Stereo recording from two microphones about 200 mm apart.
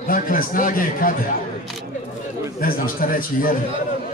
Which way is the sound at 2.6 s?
45° left (ahead or behind).